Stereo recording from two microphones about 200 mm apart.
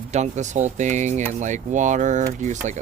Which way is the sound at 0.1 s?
35° right (ahead or behind).